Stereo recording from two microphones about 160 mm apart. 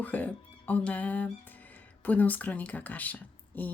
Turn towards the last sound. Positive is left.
turn(degrees=10)  # may be behind; listen again after turning